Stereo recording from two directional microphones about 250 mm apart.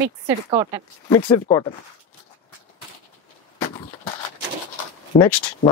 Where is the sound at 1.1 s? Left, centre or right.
Centre.